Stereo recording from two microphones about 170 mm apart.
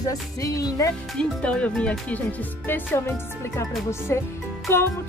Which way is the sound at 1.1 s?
5° left (ahead or behind).